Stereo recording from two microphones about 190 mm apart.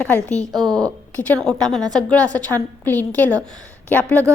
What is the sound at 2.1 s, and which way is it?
A woman's voice, 10° left (ahead or behind).